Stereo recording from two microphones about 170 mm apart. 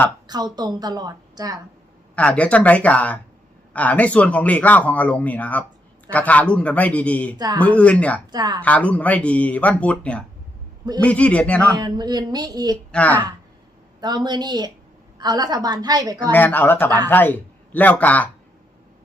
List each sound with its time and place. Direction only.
0.3 s a woman's voice: 25° right (ahead or behind)
2.1 s speech: 5° left (ahead or behind)
7.3 s a woman's voice: 25° right (ahead or behind)
7.6 s speech: 10° left (ahead or behind)
8.3 s a woman's voice: 25° right (ahead or behind)
8.6 s speech: 10° left (ahead or behind)
11.8 s a woman's voice: 25° right (ahead or behind)
12.9 s speech: 10° left (ahead or behind)
14.3 s a woman's voice: 25° right (ahead or behind)
16.3 s speech: 10° left (ahead or behind)